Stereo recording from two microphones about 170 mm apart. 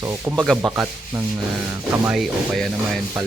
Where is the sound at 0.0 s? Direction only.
15° right (ahead or behind).